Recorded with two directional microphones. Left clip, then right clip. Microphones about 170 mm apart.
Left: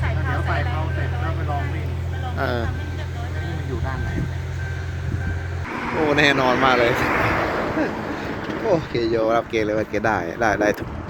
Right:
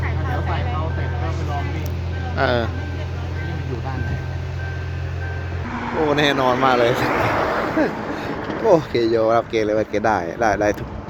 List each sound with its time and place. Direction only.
2.4 s speech: 10° right (ahead or behind)
6.1 s speech: centre (ahead or behind)
6.9 s a sound: 55° right (ahead or behind)
8.6 s speech: 25° right (ahead or behind)
9.1 s speech: 5° right (ahead or behind)